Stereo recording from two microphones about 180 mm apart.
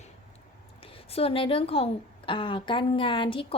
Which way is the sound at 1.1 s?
30° left (ahead or behind).